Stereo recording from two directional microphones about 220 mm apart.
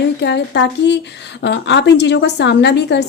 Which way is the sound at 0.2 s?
50° left (ahead or behind).